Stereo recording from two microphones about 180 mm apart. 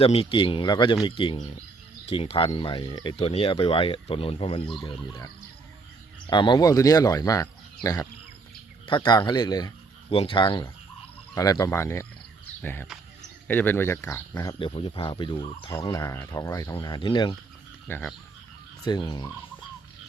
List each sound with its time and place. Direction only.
0.0 s speech: 30° left (ahead or behind)
8.9 s speech: 25° left (ahead or behind)
14.6 s speech: 30° left (ahead or behind)
17.8 s speech: 10° left (ahead or behind)
18.9 s speech: 25° left (ahead or behind)